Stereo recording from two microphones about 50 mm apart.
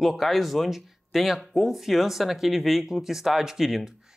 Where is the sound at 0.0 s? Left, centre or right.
Centre.